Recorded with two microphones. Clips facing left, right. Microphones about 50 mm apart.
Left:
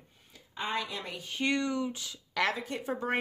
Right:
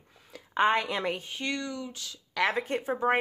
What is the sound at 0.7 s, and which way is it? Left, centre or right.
Speech, right.